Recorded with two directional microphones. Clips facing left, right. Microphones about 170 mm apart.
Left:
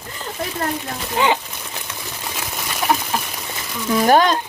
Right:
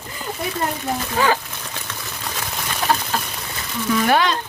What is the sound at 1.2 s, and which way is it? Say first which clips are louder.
Speech: left 1 dB; 20° left (ahead or behind).